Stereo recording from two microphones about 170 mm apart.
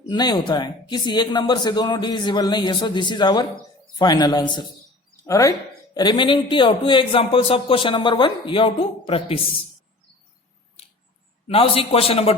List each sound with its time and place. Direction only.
0.0 s speech: 25° left (ahead or behind)
11.4 s a man's voice: 35° left (ahead or behind)